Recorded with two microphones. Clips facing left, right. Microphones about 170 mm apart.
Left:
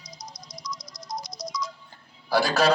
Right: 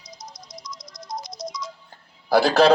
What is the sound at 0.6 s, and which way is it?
Music, 25° right (ahead or behind).